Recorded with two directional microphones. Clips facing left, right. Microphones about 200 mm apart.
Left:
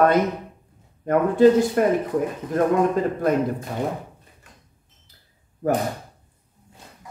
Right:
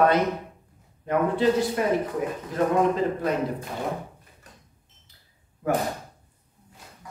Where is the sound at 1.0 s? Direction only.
50° left (ahead or behind).